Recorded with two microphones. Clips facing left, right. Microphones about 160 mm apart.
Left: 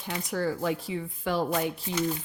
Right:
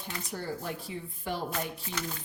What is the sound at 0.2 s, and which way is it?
Speech, 90° left.